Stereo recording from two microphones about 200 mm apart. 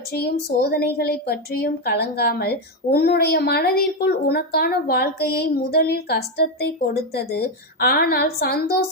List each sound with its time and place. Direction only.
0.1 s a woman's voice: 50° left (ahead or behind)